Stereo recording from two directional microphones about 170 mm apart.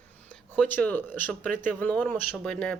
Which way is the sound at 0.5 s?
10° left (ahead or behind).